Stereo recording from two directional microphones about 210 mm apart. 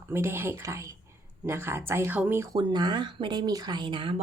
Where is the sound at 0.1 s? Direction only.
10° right (ahead or behind).